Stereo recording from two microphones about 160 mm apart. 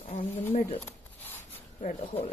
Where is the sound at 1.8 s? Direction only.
40° left (ahead or behind).